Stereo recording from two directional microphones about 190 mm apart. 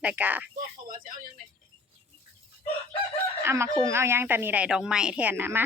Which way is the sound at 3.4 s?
15° right (ahead or behind).